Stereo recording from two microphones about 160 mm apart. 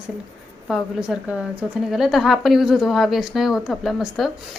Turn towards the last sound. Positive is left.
turn(degrees=0)  # may be behind; listen again after turning